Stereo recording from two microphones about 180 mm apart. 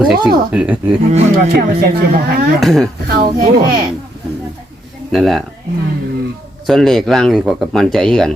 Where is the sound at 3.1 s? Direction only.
60° right (ahead or behind).